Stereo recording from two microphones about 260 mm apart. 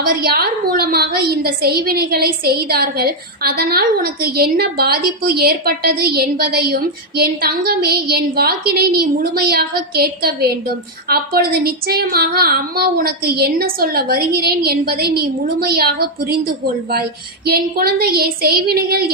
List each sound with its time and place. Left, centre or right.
0.0 s a woman's voice: right